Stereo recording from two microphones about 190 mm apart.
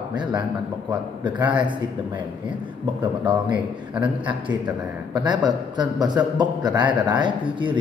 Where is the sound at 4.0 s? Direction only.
25° right (ahead or behind).